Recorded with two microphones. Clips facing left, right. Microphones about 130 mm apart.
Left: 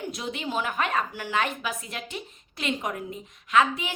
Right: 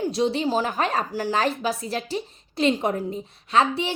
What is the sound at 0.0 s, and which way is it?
A woman's voice, 30° right (ahead or behind).